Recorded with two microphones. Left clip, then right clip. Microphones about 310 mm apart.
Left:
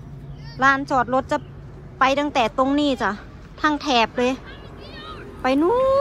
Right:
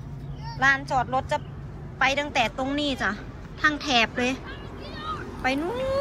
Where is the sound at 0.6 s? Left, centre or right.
Centre.